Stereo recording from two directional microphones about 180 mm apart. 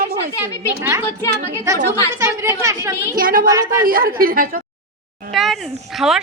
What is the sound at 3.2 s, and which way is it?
Speech, 50° right (ahead or behind).